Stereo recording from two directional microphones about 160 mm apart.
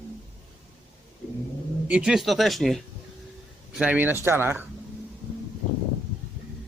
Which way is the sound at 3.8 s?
10° right (ahead or behind).